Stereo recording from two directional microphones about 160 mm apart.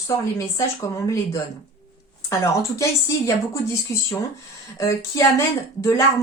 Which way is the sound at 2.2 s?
20° left (ahead or behind).